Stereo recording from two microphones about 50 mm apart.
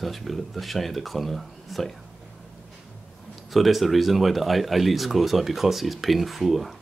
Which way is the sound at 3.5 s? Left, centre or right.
Centre.